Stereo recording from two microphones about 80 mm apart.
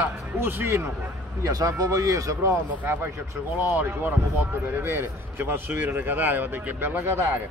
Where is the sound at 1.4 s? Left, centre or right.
Right.